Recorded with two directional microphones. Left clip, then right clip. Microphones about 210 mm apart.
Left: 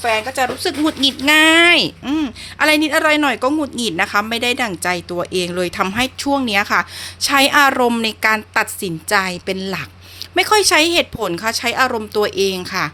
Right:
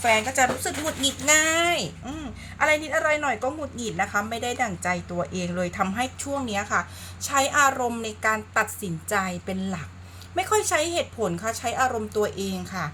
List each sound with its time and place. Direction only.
0.0 s a woman's voice: 30° left (ahead or behind)